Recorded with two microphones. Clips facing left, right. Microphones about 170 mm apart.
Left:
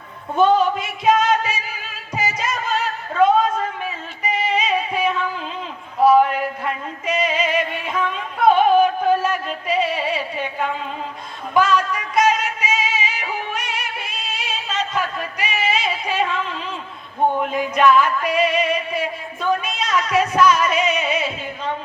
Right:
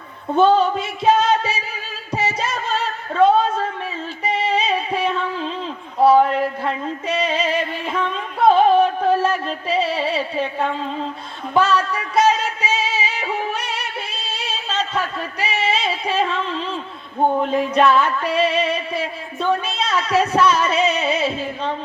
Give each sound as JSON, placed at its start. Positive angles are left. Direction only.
{"t": 0.3, "sound": "music", "side_deg": -30}
{"t": 6.1, "sound": "a sound", "side_deg": -30}
{"t": 11.5, "sound": "music", "side_deg": -30}